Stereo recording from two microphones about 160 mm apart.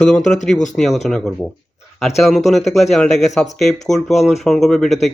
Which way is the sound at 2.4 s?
45° left (ahead or behind).